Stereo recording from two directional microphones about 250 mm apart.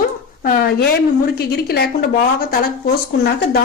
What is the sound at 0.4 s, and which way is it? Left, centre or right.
A woman's voice, left.